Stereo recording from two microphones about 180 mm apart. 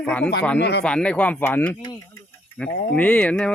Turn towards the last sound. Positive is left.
turn(degrees=5)  # may be behind; listen again after turning